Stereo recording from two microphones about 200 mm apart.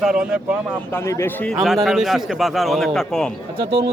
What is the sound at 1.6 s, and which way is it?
Speech, centre (ahead or behind).